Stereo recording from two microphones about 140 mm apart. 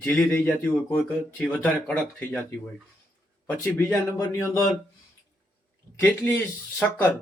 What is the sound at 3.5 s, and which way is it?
A man's voice, 15° left (ahead or behind).